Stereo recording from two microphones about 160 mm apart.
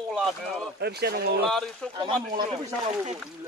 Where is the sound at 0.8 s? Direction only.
90° right.